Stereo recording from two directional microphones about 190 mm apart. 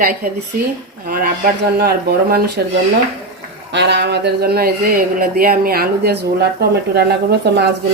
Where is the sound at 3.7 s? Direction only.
65° right (ahead or behind).